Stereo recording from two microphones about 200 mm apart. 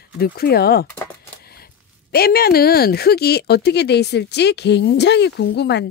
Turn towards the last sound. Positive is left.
turn(degrees=55)  # may be behind; listen again after turning